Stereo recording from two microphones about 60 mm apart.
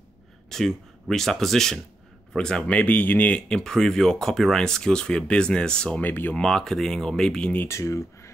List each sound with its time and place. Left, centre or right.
0.5 s speech: centre
2.8 s speech: left
3.4 s speech: centre
5.9 s speech: left
6.3 s speech: centre
7.6 s speech: left